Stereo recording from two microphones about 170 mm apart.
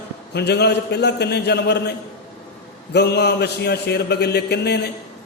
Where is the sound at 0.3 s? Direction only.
75° left (ahead or behind).